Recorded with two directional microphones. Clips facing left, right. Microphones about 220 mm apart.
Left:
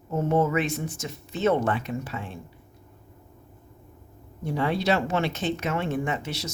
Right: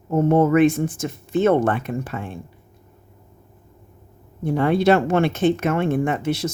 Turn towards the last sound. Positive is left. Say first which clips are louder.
# right 8 dB
turn(degrees=-55)  # may be behind; listen again after turning